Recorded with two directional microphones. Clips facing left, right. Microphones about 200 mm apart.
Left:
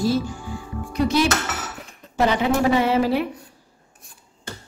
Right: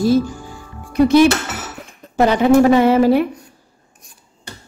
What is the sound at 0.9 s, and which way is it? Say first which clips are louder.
Dishes: right 9 dB; 55° right (ahead or behind).